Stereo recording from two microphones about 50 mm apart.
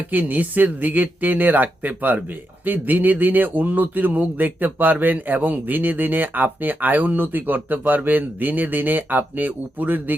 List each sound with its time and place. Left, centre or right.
0.1 s a man's voice: right